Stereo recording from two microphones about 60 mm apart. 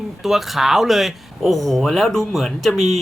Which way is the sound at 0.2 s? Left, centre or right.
Centre.